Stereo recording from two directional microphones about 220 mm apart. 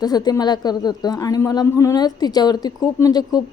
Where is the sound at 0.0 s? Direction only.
20° left (ahead or behind).